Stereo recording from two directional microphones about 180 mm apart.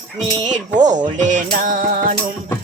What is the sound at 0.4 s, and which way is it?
Music, 45° right (ahead or behind).